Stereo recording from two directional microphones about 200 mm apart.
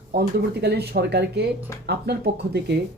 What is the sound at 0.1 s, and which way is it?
A man's voice, 55° right (ahead or behind).